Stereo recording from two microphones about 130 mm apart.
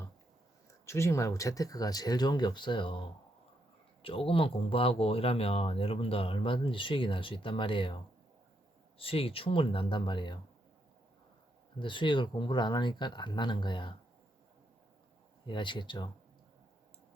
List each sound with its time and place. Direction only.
0.9 s speech: 20° left (ahead or behind); by 3.0 s 40° left (ahead or behind)
4.0 s speech: 45° left (ahead or behind)
9.0 s speech: 45° left (ahead or behind)
11.8 s speech: 40° left (ahead or behind)
15.4 s speech: 40° left (ahead or behind)